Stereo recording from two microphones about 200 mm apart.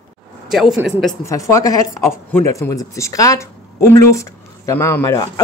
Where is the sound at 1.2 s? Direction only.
15° left (ahead or behind).